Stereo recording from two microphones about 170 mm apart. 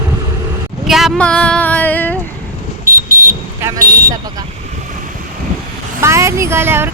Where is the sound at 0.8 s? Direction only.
Centre (ahead or behind).